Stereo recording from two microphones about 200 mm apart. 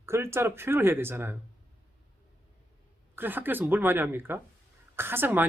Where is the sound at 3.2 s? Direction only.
10° right (ahead or behind).